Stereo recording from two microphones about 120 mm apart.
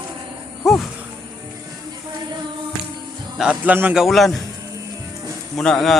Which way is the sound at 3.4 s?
10° right (ahead or behind).